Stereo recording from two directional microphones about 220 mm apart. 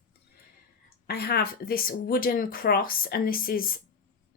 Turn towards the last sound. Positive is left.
turn(degrees=40)  # may be behind; listen again after turning